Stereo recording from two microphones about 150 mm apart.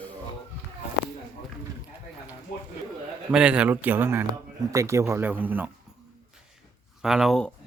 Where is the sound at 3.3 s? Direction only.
5° right (ahead or behind).